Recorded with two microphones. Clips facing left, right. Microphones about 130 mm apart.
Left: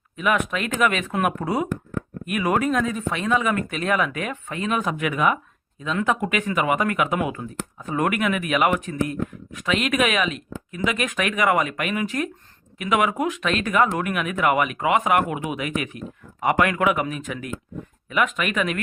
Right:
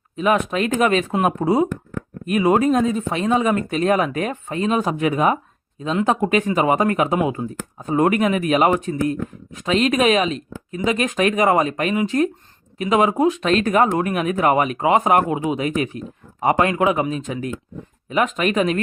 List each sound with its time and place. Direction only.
0.2 s speech: 30° right (ahead or behind)